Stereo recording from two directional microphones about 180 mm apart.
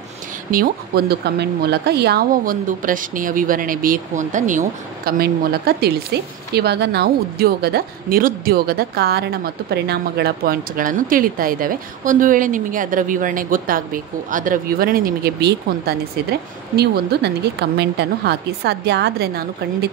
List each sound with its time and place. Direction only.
0.5 s speech: 55° right (ahead or behind)